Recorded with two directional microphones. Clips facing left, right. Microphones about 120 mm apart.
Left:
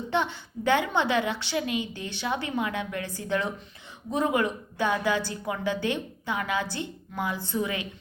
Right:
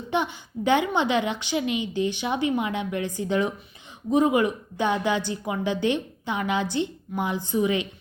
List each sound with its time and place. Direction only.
0.1 s a woman's voice: 15° right (ahead or behind)